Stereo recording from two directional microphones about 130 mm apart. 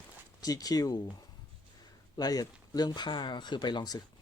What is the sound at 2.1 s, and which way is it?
Speech, 30° left (ahead or behind).